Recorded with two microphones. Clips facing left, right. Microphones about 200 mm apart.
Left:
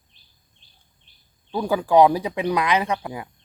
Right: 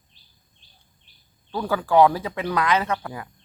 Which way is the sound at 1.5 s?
15° left (ahead or behind).